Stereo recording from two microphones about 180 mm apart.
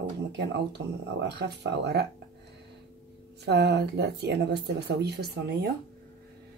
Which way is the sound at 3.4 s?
65° right (ahead or behind).